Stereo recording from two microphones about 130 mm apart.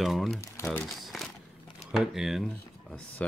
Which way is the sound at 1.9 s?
5° right (ahead or behind).